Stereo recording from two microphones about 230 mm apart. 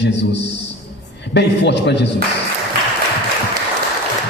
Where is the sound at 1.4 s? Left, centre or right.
Left.